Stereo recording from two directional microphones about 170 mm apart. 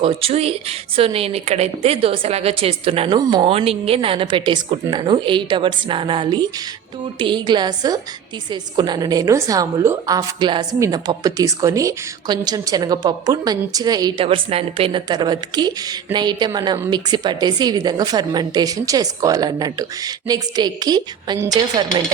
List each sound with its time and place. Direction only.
0.0 s a woman's voice: 35° right (ahead or behind)
14.3 s a woman's voice: 35° right (ahead or behind); by 21.6 s 20° right (ahead or behind)